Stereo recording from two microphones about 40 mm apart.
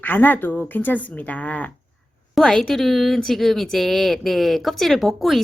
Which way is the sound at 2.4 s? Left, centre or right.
Centre.